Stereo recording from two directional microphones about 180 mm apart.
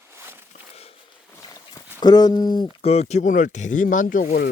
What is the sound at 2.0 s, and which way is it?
Speech, 20° left (ahead or behind).